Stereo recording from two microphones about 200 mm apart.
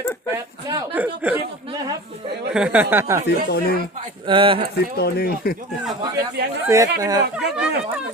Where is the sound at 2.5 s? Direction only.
5° right (ahead or behind).